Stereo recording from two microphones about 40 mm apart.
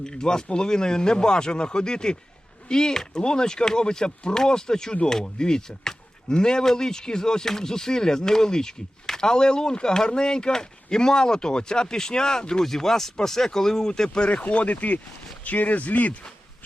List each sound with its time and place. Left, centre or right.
0.0 s speech: centre
14.3 s speech: left